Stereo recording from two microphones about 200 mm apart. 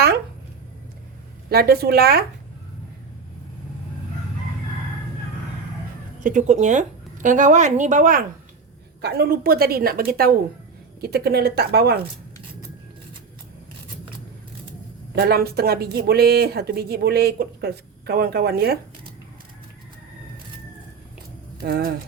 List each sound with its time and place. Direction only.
1.5 s speech: 50° right (ahead or behind)
6.2 s a woman's voice: 40° right (ahead or behind)
9.0 s speech: 55° right (ahead or behind)
15.1 s speech: 50° right (ahead or behind)
21.6 s speech: 50° right (ahead or behind)